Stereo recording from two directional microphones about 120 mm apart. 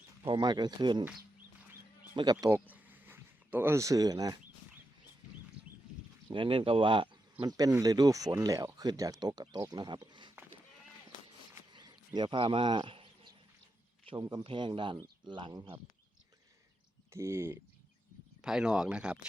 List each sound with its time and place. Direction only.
0.3 s speech: 40° right (ahead or behind)
2.1 s speech: 35° right (ahead or behind)
2.5 s a sound: 15° right (ahead or behind); by 4.4 s 30° right (ahead or behind)
6.3 s speech: 45° right (ahead or behind)
11.7 s insect: 35° right (ahead or behind)
14.0 s speech: 45° right (ahead or behind)
17.1 s speech: 20° right (ahead or behind)
18.4 s speech: 5° right (ahead or behind)